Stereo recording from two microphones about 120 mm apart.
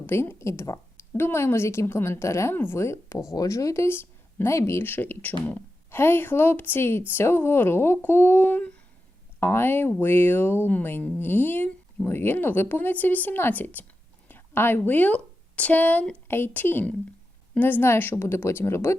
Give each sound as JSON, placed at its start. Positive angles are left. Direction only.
{"t": 0.0, "sound": "a woman's voice", "side_deg": 20}